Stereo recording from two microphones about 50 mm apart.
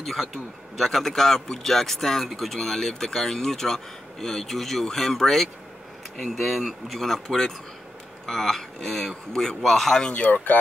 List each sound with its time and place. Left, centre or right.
0.0 s speech: centre
7.0 s speech: centre
10.1 s speech: left